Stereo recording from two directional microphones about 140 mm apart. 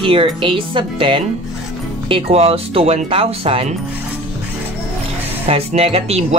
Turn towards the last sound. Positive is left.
turn(degrees=-45)  # may be behind; listen again after turning